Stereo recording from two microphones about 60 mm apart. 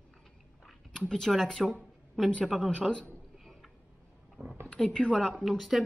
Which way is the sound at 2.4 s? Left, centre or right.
Centre.